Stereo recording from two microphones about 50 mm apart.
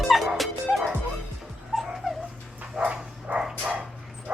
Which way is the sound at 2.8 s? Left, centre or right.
Right.